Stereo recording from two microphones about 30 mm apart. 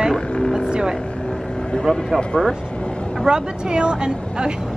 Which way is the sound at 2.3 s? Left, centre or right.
Left.